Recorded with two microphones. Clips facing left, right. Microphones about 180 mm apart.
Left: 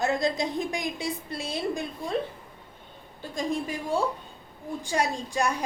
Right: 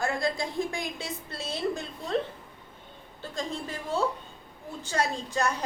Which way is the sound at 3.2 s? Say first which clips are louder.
Left 5 dB; 15° left (ahead or behind).